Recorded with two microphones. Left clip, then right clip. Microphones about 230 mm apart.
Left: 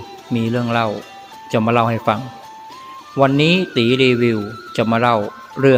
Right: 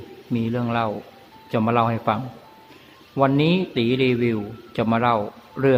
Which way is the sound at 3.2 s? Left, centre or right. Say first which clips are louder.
Left 5 dB; centre.